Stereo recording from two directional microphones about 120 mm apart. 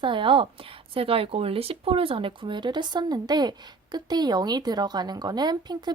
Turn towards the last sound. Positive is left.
turn(degrees=-35)  # may be behind; listen again after turning